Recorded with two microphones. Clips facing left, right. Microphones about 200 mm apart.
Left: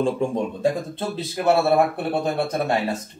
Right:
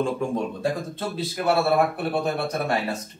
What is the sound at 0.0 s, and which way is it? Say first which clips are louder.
A man's voice: left 3 dB; 25° left (ahead or behind).